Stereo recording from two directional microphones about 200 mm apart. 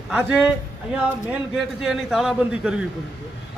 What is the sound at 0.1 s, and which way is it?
Speech, 5° right (ahead or behind).